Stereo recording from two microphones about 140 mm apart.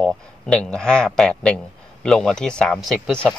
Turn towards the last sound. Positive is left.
turn(degrees=5)  # may be behind; listen again after turning